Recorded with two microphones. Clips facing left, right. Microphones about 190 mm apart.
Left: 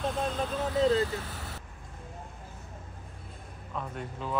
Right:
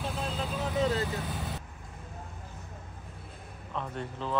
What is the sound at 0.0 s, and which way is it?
Vehicle, 5° right (ahead or behind).